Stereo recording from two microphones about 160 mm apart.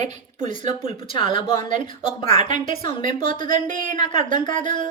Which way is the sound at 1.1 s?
35° left (ahead or behind).